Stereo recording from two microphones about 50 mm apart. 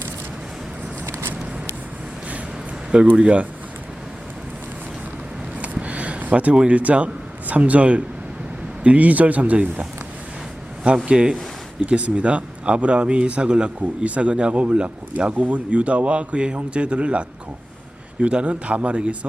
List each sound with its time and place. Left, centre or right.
3.2 s a man's voice: right
5.5 s a sound: right
6.7 s a man's voice: right
10.8 s a man's voice: centre